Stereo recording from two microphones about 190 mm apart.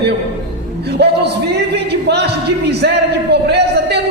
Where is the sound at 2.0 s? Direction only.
60° right (ahead or behind).